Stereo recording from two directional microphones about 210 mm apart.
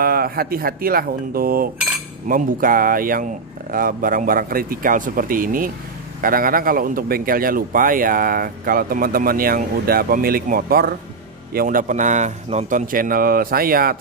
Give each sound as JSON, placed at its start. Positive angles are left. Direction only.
{"t": 0.0, "sound": "a man's voice", "side_deg": -45}